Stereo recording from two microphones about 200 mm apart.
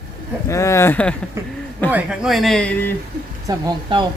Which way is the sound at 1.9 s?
5° right (ahead or behind).